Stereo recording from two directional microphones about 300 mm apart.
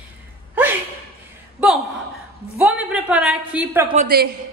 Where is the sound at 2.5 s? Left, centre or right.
Centre.